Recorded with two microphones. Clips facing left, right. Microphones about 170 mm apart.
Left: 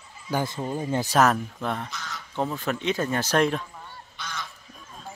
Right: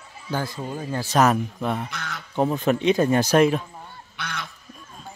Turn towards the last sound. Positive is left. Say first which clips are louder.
# right 3 dB
turn(degrees=-65)  # may be behind; listen again after turning